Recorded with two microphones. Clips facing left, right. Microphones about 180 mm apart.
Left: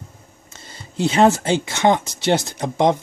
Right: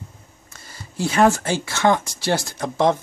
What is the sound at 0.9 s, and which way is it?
Speech, 20° left (ahead or behind).